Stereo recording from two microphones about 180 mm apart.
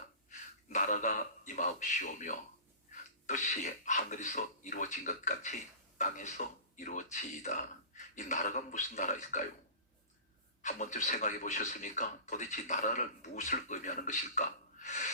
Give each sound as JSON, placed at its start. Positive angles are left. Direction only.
{"t": 0.3, "sound": "a man's voice", "side_deg": 45}
{"t": 10.6, "sound": "speech", "side_deg": 45}